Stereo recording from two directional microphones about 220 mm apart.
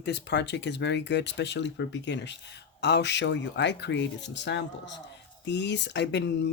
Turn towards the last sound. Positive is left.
turn(degrees=50)  # may be behind; listen again after turning